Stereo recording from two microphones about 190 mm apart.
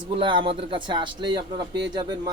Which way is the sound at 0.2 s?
25° right (ahead or behind).